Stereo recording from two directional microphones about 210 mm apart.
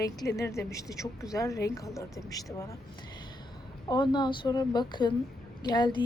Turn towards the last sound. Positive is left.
turn(degrees=20)  # may be behind; listen again after turning